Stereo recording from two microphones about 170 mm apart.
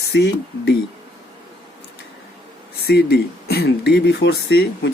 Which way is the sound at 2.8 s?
70° left (ahead or behind).